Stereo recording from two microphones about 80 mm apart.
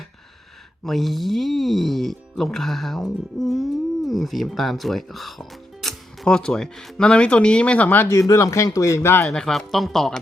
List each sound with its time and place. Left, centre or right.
0.9 s speech: centre
8.0 s speech: left
9.3 s speech: centre